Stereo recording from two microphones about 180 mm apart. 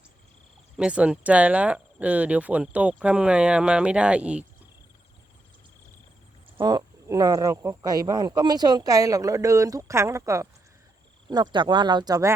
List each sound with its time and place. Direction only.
0.8 s speech: 5° right (ahead or behind)
6.6 s speech: 20° right (ahead or behind)